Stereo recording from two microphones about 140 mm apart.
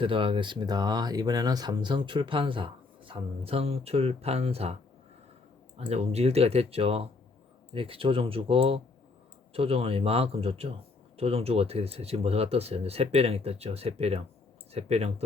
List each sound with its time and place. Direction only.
0.0 s speech: 40° right (ahead or behind)